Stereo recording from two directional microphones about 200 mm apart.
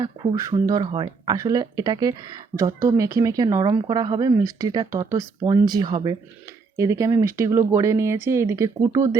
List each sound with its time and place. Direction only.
0.0 s speech: 20° right (ahead or behind)